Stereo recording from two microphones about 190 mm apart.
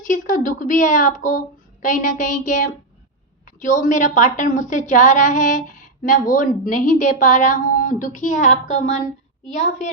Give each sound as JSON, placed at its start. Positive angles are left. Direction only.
{"t": 0.1, "sound": "a woman's voice", "side_deg": 45}